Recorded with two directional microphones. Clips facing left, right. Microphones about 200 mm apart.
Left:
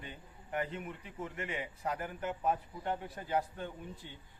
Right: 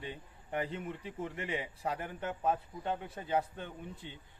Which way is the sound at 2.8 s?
20° right (ahead or behind).